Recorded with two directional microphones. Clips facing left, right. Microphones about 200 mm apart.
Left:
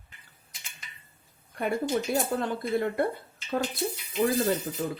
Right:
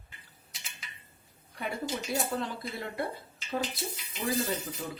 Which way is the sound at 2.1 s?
50° left (ahead or behind).